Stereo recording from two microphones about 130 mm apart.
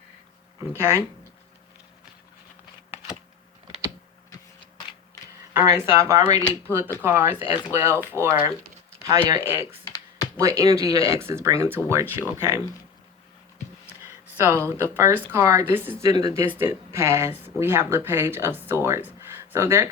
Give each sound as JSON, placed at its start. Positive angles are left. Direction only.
{"t": 0.8, "sound": "speech", "side_deg": -20}
{"t": 5.5, "sound": "speech", "side_deg": -20}
{"t": 7.3, "sound": "speech", "side_deg": 40}
{"t": 7.7, "sound": "speech", "side_deg": -20}
{"t": 9.8, "sound": "computer keyboard", "side_deg": 30}
{"t": 10.4, "sound": "speech", "side_deg": -25}
{"t": 14.0, "sound": "a sound", "side_deg": -20}
{"t": 14.9, "sound": "speech", "side_deg": -15}